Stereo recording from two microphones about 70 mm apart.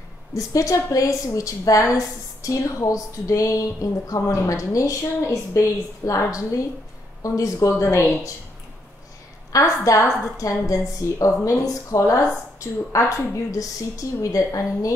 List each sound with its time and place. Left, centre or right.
0.3 s a woman's voice: left
9.5 s a woman's voice: left